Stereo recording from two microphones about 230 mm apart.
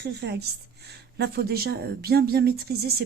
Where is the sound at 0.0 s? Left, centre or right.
Right.